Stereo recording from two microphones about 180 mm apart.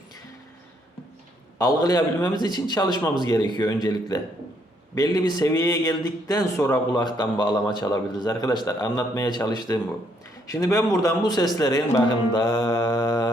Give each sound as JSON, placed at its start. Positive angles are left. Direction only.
{"t": 1.5, "sound": "speech", "side_deg": 20}